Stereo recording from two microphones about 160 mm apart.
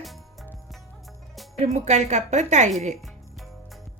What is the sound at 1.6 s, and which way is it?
Speech, 45° right (ahead or behind).